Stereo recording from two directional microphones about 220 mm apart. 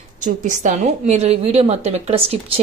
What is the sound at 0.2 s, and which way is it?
A woman's voice, 35° right (ahead or behind).